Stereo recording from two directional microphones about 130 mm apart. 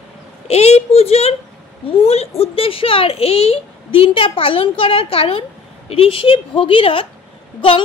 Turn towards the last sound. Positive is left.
turn(degrees=40)  # may be behind; listen again after turning